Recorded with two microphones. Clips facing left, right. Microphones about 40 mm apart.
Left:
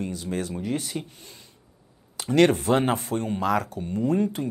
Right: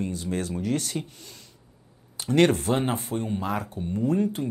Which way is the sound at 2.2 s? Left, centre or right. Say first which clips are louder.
Even; left.